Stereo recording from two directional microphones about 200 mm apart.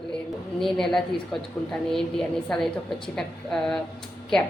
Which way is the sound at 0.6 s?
Centre (ahead or behind).